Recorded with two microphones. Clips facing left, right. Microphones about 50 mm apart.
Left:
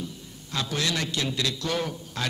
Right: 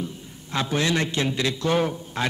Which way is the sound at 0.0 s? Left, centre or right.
Right.